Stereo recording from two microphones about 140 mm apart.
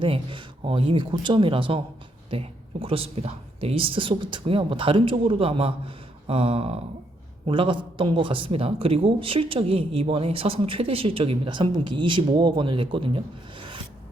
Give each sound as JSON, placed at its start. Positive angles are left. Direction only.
{"t": 0.0, "sound": "a man's voice", "side_deg": -35}